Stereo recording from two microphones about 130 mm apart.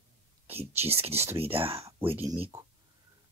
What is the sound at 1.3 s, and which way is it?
Speech, 20° right (ahead or behind).